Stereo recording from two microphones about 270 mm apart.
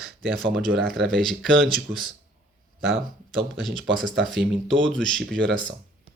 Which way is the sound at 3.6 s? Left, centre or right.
Centre.